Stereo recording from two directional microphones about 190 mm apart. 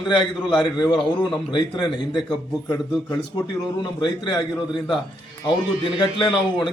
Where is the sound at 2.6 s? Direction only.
10° left (ahead or behind).